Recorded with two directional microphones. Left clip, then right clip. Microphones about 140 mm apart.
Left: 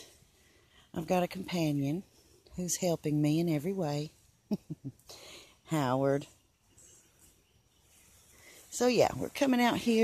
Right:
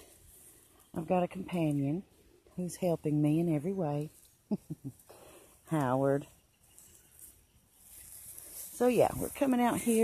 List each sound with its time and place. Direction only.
0.9 s speech: 10° left (ahead or behind)
5.0 s a sound: 5° left (ahead or behind)
8.7 s speech: 5° left (ahead or behind)
9.2 s speech: 15° left (ahead or behind)